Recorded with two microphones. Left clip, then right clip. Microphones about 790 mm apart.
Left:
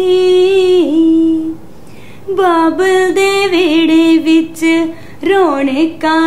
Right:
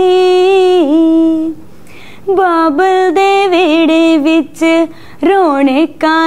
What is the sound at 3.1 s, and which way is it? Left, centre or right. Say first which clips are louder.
Music: right 2 dB; right.